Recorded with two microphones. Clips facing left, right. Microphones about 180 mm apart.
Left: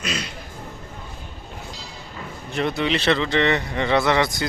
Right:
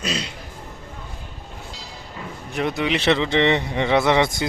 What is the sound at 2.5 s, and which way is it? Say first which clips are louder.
Speech: even; 15° right (ahead or behind).